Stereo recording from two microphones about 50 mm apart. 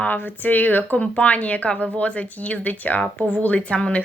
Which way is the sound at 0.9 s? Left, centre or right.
Left.